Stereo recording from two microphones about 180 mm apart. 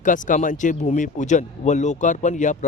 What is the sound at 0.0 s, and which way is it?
Speech, 45° left (ahead or behind).